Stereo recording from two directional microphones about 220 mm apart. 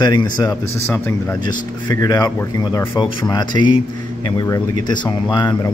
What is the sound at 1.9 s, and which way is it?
Speech, 15° left (ahead or behind).